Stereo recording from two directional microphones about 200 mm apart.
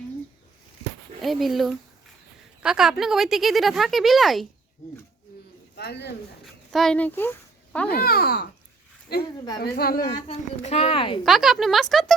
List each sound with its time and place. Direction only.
1.2 s speech: centre (ahead or behind)
5.7 s speech: 55° left (ahead or behind)
6.4 s speech: centre (ahead or behind)
7.9 s a child's voice: 50° left (ahead or behind)
10.0 s speech: 25° left (ahead or behind)
11.2 s speech: centre (ahead or behind)